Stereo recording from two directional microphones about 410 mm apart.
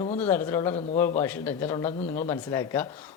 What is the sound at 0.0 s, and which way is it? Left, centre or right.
Speech, centre.